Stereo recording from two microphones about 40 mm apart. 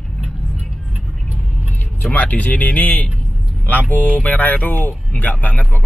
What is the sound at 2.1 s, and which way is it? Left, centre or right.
Speech, left.